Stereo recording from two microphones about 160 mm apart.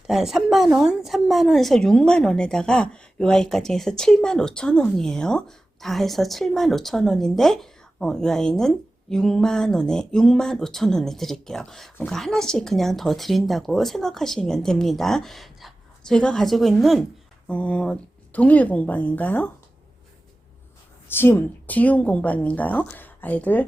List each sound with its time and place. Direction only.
0.1 s a woman's voice: centre (ahead or behind)
21.1 s a woman's voice: 15° left (ahead or behind)